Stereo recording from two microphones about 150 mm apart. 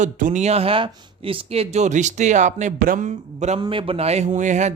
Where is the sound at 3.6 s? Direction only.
35° right (ahead or behind); by 4.7 s 55° right (ahead or behind).